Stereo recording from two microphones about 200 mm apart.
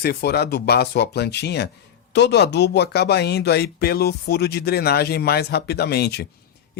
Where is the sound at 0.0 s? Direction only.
50° left (ahead or behind).